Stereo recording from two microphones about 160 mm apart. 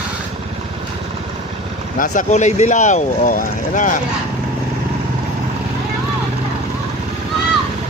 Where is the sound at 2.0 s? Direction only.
50° left (ahead or behind).